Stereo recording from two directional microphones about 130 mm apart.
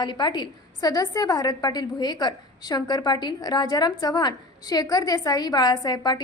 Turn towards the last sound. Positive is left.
turn(degrees=35)  # may be behind; listen again after turning